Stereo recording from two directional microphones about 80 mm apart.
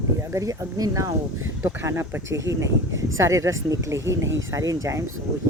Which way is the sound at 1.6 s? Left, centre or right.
Right.